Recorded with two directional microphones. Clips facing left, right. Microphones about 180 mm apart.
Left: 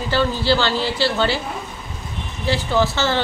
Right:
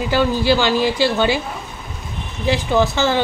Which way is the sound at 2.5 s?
15° right (ahead or behind).